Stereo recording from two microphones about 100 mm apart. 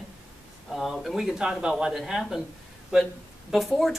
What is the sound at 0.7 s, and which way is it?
Speech, centre (ahead or behind).